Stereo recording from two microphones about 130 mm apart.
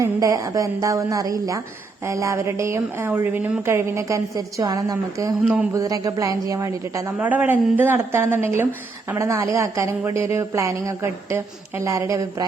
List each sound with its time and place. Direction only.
0.0 s a woman's voice: 25° right (ahead or behind)
7.2 s a woman's voice: 15° right (ahead or behind)